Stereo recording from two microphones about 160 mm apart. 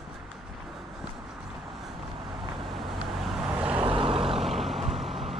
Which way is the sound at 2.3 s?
30° right (ahead or behind).